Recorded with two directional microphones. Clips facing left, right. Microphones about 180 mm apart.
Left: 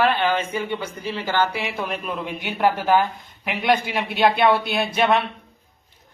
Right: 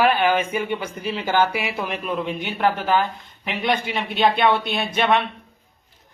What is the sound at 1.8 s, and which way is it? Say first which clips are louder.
Speech: right 2 dB; centre (ahead or behind).